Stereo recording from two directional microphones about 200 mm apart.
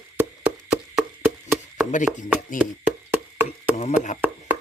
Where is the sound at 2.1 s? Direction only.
5° right (ahead or behind).